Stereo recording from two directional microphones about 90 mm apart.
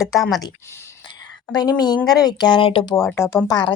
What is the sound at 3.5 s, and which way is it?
Speech, 60° left (ahead or behind).